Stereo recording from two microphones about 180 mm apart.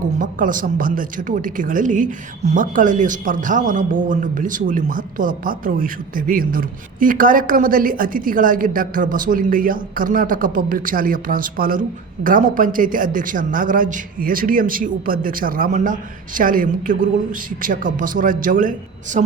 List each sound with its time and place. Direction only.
0.2 s a woman's voice: 50° right (ahead or behind)